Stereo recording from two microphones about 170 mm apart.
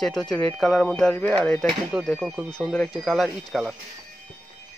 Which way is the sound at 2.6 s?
5° left (ahead or behind).